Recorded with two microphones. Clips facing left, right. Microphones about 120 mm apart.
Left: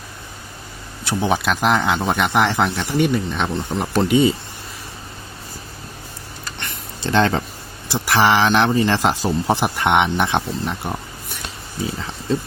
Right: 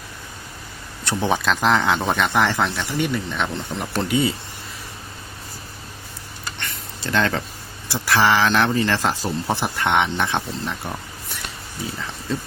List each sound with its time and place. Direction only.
1.0 s speech: 10° left (ahead or behind)
6.6 s a sound: 25° left (ahead or behind)
7.9 s a man's voice: 20° left (ahead or behind)